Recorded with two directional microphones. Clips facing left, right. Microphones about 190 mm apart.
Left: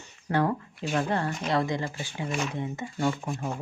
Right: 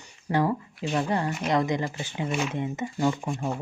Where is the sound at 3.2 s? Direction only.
Centre (ahead or behind).